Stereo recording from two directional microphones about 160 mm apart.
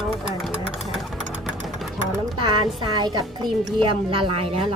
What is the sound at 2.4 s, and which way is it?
A woman's voice, 30° right (ahead or behind).